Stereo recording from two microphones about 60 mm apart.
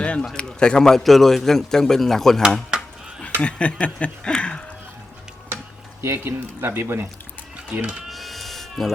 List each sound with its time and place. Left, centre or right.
0.0 s a sound: centre
0.3 s a man's voice: centre
2.7 s a sound: centre
3.4 s speech: centre
6.0 s speech: right
8.1 s sheep: centre